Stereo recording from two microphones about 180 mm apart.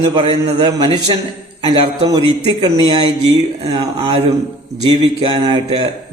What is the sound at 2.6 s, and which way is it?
A man's voice, 25° right (ahead or behind).